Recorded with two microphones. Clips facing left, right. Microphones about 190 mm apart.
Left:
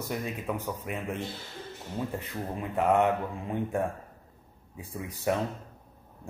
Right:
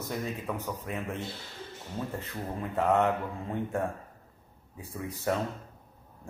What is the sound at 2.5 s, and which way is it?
Speech, 15° left (ahead or behind).